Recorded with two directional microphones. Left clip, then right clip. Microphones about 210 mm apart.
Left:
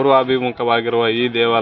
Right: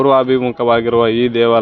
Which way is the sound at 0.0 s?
55° right (ahead or behind).